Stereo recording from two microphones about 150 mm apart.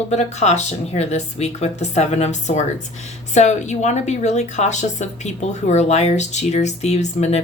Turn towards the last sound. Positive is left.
turn(degrees=45)  # may be behind; listen again after turning